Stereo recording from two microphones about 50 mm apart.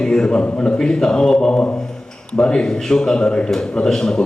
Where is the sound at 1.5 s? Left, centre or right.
Left.